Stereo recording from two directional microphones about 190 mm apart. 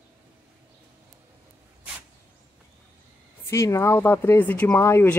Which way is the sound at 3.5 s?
15° left (ahead or behind).